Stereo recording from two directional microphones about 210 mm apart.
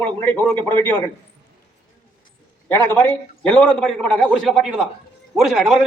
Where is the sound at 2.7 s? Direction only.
10° left (ahead or behind).